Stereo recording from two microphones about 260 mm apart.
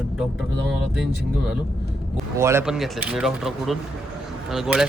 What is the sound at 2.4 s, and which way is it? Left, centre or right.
Speech, centre.